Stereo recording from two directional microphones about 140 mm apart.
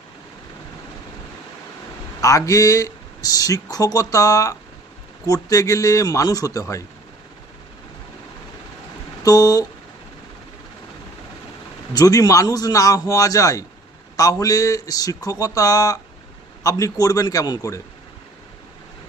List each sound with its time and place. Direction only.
2.2 s speech: 25° left (ahead or behind)
9.2 s speech: 25° left (ahead or behind)
11.9 s speech: 25° left (ahead or behind)